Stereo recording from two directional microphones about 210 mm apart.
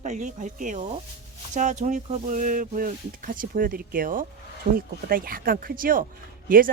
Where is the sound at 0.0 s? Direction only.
35° right (ahead or behind).